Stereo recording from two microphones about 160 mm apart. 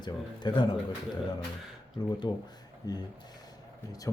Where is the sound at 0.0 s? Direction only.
25° left (ahead or behind).